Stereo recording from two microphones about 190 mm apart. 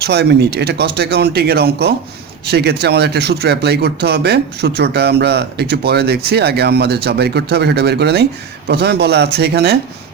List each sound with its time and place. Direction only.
0.0 s speech: 60° right (ahead or behind)